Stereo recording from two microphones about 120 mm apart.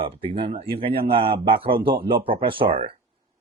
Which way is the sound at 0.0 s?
50° right (ahead or behind).